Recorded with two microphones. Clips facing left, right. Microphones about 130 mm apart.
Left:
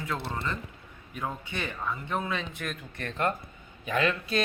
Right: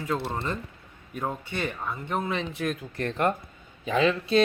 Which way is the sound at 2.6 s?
35° right (ahead or behind).